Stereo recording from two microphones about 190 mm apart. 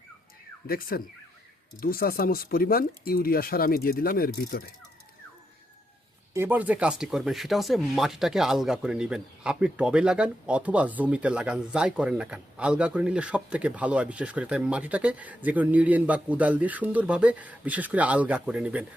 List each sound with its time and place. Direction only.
0.7 s speech: 50° left (ahead or behind)
6.3 s speech: 10° right (ahead or behind)